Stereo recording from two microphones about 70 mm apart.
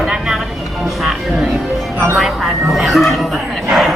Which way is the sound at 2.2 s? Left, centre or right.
Centre.